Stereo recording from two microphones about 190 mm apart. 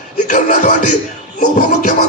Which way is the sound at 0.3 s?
40° left (ahead or behind).